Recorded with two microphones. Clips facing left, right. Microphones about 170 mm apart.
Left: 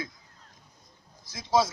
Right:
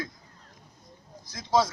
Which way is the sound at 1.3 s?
10° left (ahead or behind).